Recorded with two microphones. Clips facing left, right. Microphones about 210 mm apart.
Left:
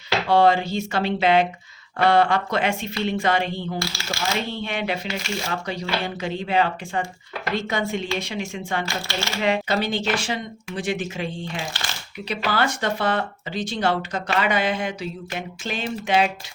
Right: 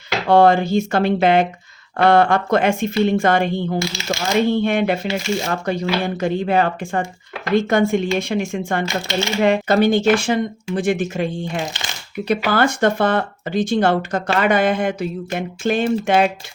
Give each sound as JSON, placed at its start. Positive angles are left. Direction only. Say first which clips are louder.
{"t": 0.3, "sound": "speech", "louder": "right 5 dB", "side_deg": -50}
{"t": 3.8, "sound": "speech", "louder": "right 7 dB", "side_deg": -20}
{"t": 4.4, "sound": "speech", "louder": "right 11 dB", "side_deg": -50}